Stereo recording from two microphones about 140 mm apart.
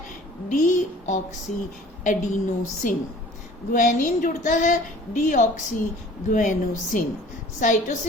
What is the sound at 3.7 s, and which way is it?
A woman's voice, 70° left (ahead or behind).